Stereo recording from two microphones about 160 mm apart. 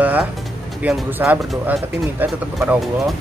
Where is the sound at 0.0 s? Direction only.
10° right (ahead or behind).